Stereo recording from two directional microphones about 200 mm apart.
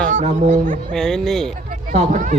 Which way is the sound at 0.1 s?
35° right (ahead or behind).